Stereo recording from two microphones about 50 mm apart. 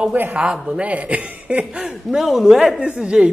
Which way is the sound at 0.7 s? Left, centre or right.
Right.